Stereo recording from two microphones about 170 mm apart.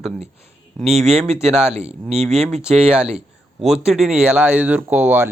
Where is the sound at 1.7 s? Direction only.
40° right (ahead or behind).